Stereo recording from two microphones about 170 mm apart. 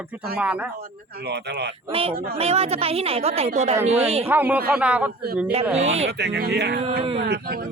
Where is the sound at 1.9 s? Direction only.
35° right (ahead or behind).